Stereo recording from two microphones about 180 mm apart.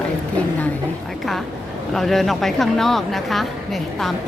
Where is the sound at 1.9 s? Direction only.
Centre (ahead or behind).